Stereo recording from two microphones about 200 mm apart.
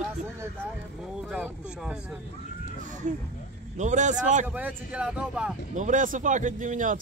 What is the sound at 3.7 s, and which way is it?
Speech, 35° right (ahead or behind).